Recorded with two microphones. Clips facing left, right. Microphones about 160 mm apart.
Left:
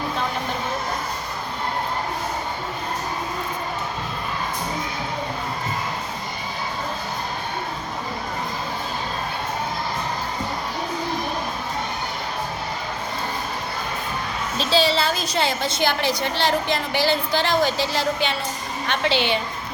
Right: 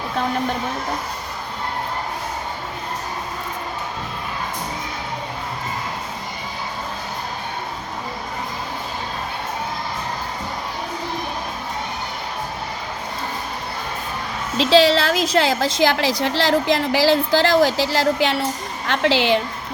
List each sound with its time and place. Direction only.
14.6 s a woman's voice: 90° right